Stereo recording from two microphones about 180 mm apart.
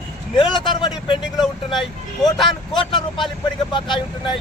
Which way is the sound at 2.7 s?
25° left (ahead or behind).